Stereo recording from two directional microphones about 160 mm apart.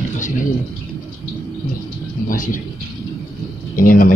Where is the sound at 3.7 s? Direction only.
60° left (ahead or behind).